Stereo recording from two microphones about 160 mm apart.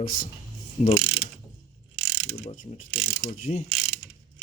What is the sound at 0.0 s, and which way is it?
Speech, 60° left (ahead or behind).